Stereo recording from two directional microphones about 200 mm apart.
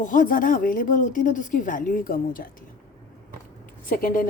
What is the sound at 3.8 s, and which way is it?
Speech, 45° left (ahead or behind).